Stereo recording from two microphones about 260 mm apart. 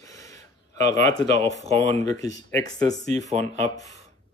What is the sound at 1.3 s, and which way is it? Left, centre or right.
Speech, left.